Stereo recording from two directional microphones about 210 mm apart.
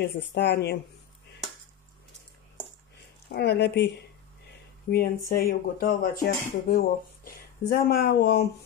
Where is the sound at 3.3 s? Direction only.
50° left (ahead or behind).